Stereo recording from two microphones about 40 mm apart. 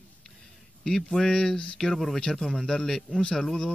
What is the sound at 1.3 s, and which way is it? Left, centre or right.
Speech, centre.